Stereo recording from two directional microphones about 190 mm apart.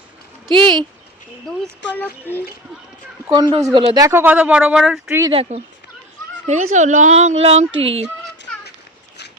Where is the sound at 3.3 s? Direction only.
25° right (ahead or behind); by 5.2 s 5° right (ahead or behind).